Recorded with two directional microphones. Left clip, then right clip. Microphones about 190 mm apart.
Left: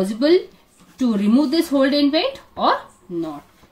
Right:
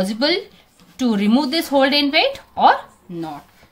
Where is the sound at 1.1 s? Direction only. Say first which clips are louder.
Even; 40° right (ahead or behind).